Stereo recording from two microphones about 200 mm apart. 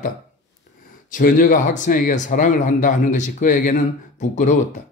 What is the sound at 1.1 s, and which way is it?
Speech, 40° left (ahead or behind).